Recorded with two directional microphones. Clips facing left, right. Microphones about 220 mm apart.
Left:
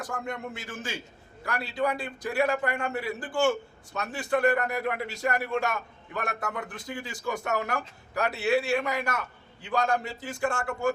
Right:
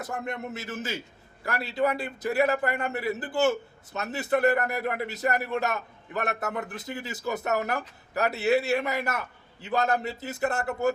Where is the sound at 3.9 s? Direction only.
20° right (ahead or behind).